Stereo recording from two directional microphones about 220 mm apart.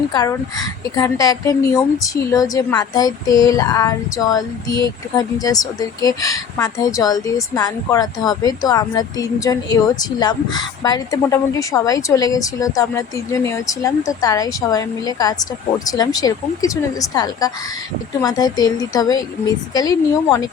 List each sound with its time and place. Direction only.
0.1 s a woman's voice: 15° left (ahead or behind)